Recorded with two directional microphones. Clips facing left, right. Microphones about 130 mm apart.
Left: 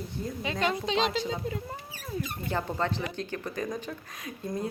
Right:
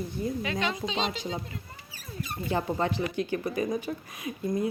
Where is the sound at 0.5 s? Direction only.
45° left (ahead or behind).